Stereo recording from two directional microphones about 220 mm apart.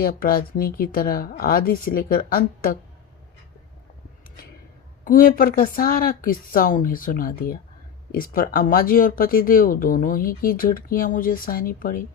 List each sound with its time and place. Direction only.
0.0 s speech: 40° left (ahead or behind)
5.0 s speech: 40° left (ahead or behind)